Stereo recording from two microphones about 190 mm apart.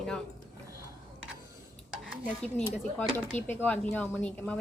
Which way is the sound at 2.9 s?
10° left (ahead or behind).